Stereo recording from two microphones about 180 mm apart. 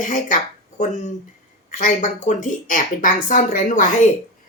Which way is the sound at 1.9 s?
40° left (ahead or behind).